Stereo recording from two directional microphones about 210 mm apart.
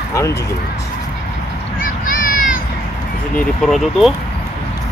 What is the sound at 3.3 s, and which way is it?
Speech, centre (ahead or behind).